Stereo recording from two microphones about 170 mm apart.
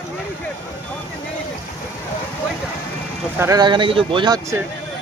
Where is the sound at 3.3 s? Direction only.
20° right (ahead or behind).